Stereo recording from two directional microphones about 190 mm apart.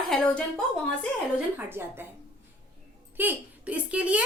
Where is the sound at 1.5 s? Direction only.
10° right (ahead or behind).